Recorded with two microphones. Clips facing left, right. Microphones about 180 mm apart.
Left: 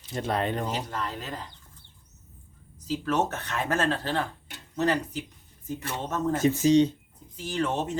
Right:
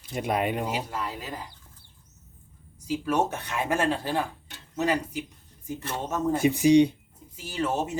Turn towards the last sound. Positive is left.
turn(degrees=-10)  # may be behind; listen again after turning